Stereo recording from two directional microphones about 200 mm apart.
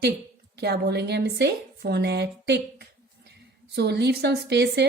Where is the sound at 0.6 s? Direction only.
55° right (ahead or behind).